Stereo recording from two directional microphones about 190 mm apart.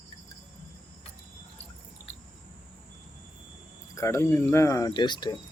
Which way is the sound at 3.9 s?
15° left (ahead or behind).